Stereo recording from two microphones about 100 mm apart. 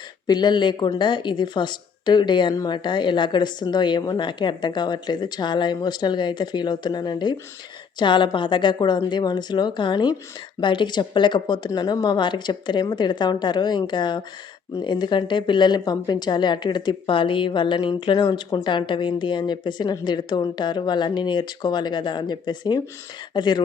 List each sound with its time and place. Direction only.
0.3 s a woman's voice: 45° left (ahead or behind)